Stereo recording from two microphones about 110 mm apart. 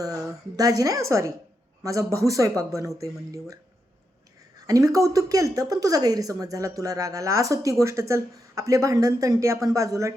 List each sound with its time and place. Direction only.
0.0 s speech: 30° right (ahead or behind)
4.6 s speech: 30° right (ahead or behind)